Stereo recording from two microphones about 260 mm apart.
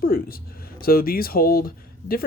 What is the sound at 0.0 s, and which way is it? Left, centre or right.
Speech, left.